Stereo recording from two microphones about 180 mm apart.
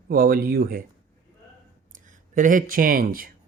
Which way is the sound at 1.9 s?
45° right (ahead or behind).